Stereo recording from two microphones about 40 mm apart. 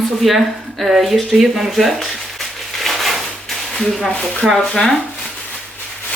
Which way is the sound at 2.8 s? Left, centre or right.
Centre.